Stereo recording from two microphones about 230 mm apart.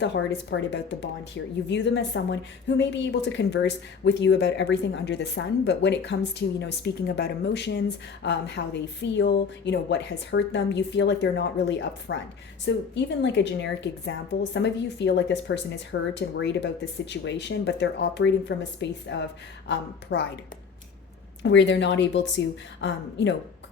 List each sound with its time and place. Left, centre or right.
0.0 s speech: left
21.4 s speech: left